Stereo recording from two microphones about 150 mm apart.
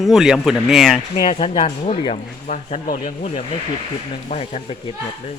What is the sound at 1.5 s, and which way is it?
A man's voice, 45° left (ahead or behind).